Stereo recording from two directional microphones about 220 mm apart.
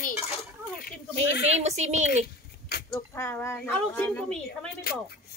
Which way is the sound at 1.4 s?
30° right (ahead or behind).